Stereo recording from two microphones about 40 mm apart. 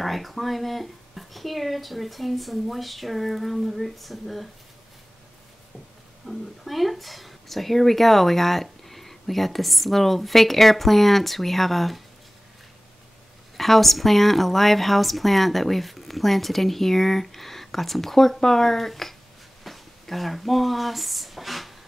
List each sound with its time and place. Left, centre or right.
0.0 s speech: centre
6.2 s speech: centre
13.6 s speech: centre